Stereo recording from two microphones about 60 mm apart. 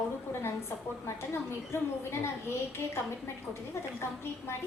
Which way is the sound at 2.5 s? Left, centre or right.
Left.